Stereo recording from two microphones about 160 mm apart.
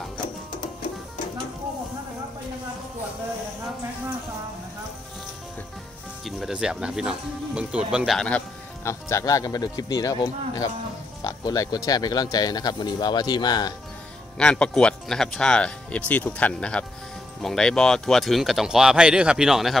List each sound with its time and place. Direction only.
6.2 s speech: 5° right (ahead or behind)
9.1 s speech: 20° left (ahead or behind)
14.4 s speech: 5° left (ahead or behind)